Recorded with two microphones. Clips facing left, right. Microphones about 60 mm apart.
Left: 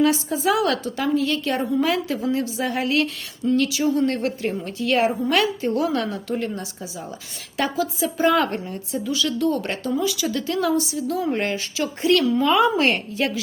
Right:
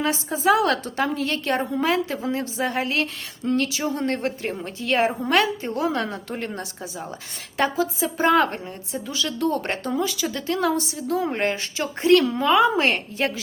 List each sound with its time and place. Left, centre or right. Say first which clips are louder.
0.0 s a woman's voice: left 2 dB; right
3.4 s a woman's voice: left 3 dB; right
12.3 s a woman's voice: even; right
13.1 s a woman's voice: left 1 dB; right